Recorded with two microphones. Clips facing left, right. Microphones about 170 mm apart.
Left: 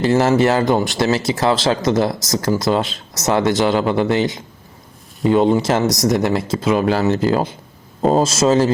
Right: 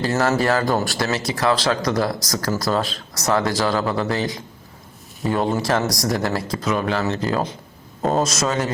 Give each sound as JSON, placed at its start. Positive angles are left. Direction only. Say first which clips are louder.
{"t": 0.0, "sound": "speech", "louder": "left 5 dB", "side_deg": 25}